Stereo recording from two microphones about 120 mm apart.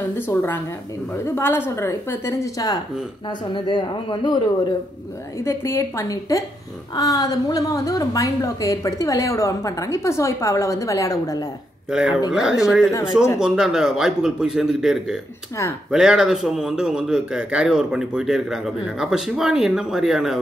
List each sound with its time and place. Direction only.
0.3 s a woman's voice: 20° left (ahead or behind)
3.3 s speech: 45° left (ahead or behind)
5.4 s a woman's voice: 20° left (ahead or behind)
11.9 s a man's voice: 5° right (ahead or behind)